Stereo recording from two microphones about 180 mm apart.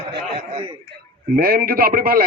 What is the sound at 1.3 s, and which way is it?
Speech, 55° right (ahead or behind).